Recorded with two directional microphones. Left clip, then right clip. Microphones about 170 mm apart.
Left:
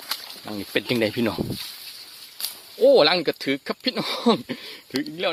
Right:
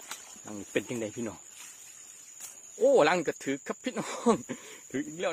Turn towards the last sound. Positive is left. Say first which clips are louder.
# left 7 dB
turn(degrees=-5)  # may be behind; listen again after turning